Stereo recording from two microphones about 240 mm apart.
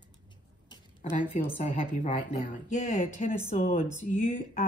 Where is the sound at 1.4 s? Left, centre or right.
Left.